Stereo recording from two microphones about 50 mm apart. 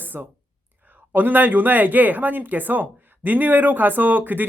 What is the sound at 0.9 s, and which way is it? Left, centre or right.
Speech, right.